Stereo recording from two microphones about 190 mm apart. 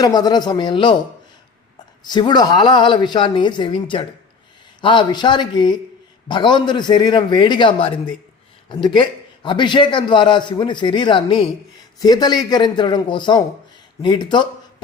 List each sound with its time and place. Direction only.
0.0 s a man's voice: 20° left (ahead or behind)
2.0 s a man's voice: 25° left (ahead or behind)